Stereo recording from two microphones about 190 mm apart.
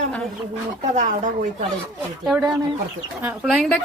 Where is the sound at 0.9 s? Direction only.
40° right (ahead or behind).